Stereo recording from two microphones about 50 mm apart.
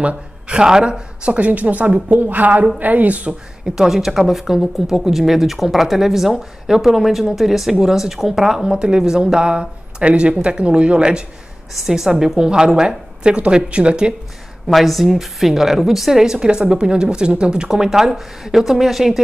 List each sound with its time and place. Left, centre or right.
0.0 s a sound: right
0.6 s a woman's voice: centre; by 3.3 s right
3.6 s a woman's voice: centre
14.7 s a woman's voice: centre